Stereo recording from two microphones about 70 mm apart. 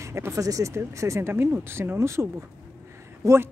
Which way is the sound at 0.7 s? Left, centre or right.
Right.